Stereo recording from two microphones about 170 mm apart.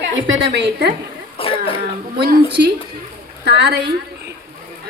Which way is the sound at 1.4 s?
30° left (ahead or behind).